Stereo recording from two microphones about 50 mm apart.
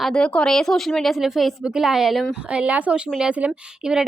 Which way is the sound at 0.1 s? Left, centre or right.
Left.